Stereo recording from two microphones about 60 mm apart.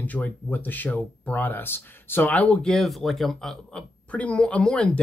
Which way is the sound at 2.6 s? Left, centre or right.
Centre.